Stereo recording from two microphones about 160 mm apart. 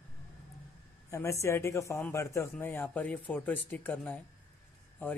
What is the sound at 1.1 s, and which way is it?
Speech, 20° left (ahead or behind).